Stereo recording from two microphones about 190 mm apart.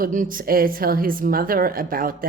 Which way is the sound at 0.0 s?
45° right (ahead or behind).